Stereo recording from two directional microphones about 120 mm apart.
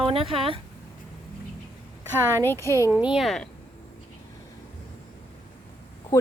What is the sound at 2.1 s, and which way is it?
Speech, 20° left (ahead or behind).